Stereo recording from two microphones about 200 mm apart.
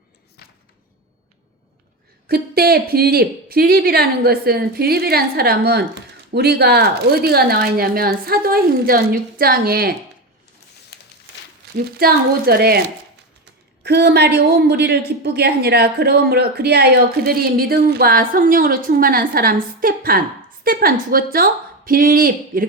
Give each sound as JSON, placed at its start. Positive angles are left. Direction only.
{"t": 2.2, "sound": "a woman's voice", "side_deg": -50}
{"t": 10.9, "sound": "a sound", "side_deg": 55}
{"t": 11.8, "sound": "a woman's voice", "side_deg": -50}
{"t": 13.8, "sound": "a woman's voice", "side_deg": -55}